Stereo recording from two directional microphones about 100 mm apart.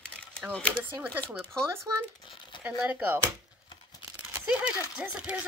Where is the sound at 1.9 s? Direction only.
35° right (ahead or behind).